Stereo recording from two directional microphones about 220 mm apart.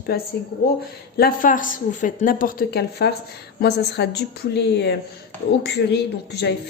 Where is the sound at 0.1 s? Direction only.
45° left (ahead or behind).